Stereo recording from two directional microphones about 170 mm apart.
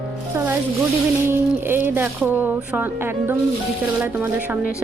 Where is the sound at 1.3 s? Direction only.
10° right (ahead or behind).